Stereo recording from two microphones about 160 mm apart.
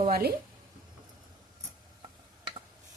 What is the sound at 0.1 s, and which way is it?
Stir, 75° right (ahead or behind).